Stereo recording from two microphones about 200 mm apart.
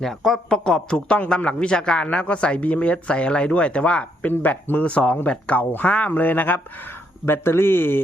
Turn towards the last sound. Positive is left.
turn(degrees=10)  # may be behind; listen again after turning